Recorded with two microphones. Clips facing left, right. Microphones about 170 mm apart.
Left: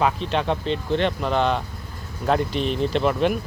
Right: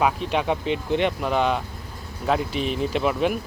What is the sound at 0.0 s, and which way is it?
Speech, 10° right (ahead or behind).